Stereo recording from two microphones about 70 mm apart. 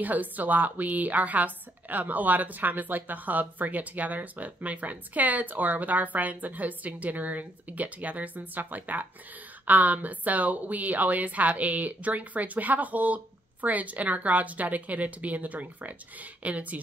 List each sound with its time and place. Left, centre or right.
0.0 s a woman's voice: right